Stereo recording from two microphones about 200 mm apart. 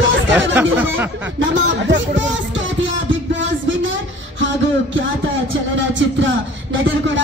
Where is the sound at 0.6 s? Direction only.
10° right (ahead or behind).